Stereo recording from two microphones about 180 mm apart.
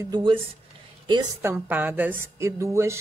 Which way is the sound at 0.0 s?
25° right (ahead or behind).